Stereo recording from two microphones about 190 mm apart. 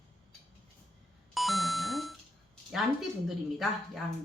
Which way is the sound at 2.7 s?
Centre (ahead or behind).